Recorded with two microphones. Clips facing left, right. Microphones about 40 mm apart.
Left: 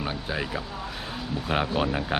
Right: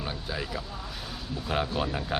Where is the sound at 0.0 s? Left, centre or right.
Left.